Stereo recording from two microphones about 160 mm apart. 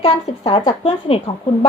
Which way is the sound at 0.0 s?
35° left (ahead or behind).